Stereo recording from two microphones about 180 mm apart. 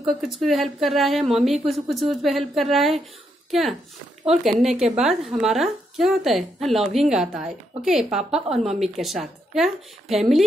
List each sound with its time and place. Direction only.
0.0 s speech: centre (ahead or behind)
4.4 s speech: centre (ahead or behind)